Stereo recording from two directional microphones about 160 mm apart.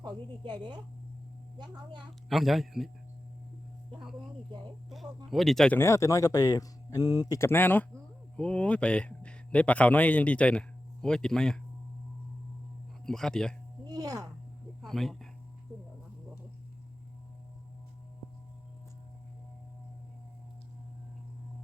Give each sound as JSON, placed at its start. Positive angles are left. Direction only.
{"t": 0.0, "sound": "speech", "side_deg": -25}
{"t": 2.3, "sound": "speech", "side_deg": 0}
{"t": 5.3, "sound": "speech", "side_deg": 0}
{"t": 5.7, "sound": "a man's voice", "side_deg": 15}
{"t": 13.1, "sound": "speech", "side_deg": 5}
{"t": 13.8, "sound": "a sound", "side_deg": -25}
{"t": 14.8, "sound": "a sound", "side_deg": 0}